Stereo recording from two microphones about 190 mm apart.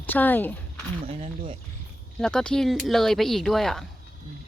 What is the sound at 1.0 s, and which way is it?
Speech, 30° right (ahead or behind).